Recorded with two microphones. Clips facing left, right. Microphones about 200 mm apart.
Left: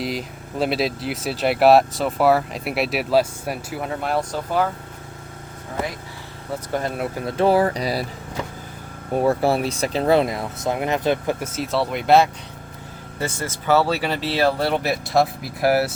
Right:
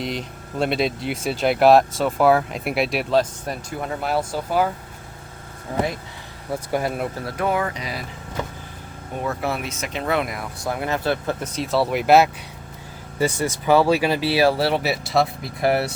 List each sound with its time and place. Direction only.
0.0 s speech: 5° left (ahead or behind)
6.5 s speech: 10° right (ahead or behind)
7.2 s speech: 25° left (ahead or behind)
9.1 s speech: 35° left (ahead or behind); by 12.3 s 5° right (ahead or behind)
13.1 s speech: 15° right (ahead or behind); by 15.9 s centre (ahead or behind)